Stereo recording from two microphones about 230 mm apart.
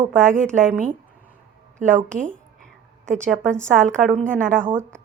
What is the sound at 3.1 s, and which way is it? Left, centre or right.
Speech, centre.